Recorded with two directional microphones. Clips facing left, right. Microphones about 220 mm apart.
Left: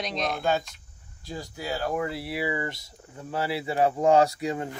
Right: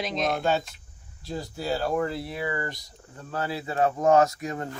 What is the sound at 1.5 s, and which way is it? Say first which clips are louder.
Speech: right 2 dB; 10° left (ahead or behind).